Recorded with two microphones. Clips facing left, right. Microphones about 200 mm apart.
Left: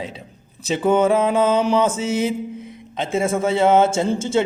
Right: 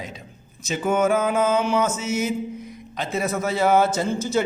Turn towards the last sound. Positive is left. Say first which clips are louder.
# left 3 dB
turn(degrees=25)  # may be behind; listen again after turning